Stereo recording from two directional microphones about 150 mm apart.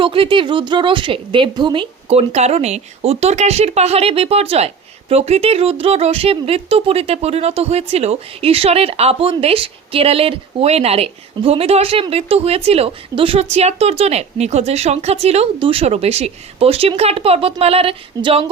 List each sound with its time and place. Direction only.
0.0 s a woman's voice: 35° right (ahead or behind)